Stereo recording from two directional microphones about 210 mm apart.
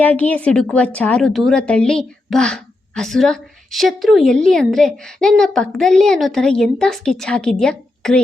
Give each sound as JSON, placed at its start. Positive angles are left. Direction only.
{"t": 0.0, "sound": "speech", "side_deg": 5}